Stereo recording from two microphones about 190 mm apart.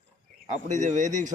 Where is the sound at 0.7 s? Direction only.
40° right (ahead or behind).